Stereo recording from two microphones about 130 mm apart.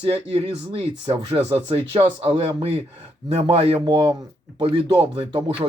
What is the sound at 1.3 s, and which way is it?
Speech, 45° right (ahead or behind).